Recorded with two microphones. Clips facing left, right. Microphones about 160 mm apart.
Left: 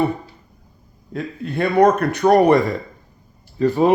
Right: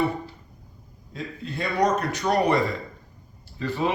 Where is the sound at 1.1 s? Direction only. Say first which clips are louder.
Left 8 dB; 60° left (ahead or behind).